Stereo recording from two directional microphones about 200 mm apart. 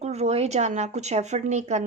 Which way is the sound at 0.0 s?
35° right (ahead or behind).